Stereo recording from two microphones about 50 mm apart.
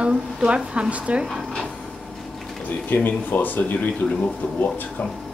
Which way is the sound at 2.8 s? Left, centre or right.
Left.